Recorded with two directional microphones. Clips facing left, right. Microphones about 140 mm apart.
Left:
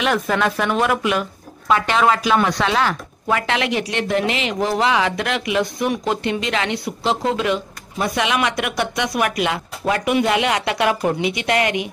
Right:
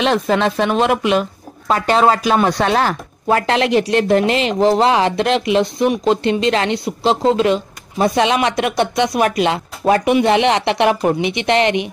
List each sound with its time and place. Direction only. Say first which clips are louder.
0.0 s speech: right 4 dB; 25° right (ahead or behind)
1.7 s speech: right 3 dB; 35° right (ahead or behind)